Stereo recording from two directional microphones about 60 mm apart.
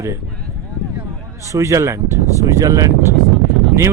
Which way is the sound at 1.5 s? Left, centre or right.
Right.